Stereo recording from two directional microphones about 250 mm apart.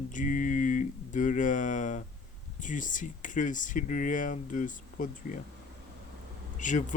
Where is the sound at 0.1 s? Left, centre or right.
Left.